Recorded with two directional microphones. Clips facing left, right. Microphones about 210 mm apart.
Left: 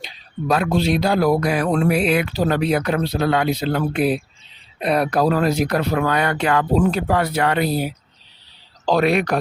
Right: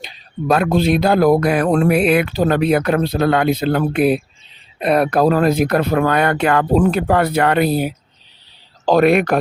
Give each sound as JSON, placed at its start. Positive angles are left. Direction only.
{"t": 0.0, "sound": "speech", "side_deg": -55}